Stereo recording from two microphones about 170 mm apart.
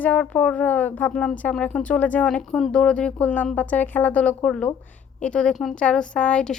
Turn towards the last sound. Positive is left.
turn(degrees=5)  # may be behind; listen again after turning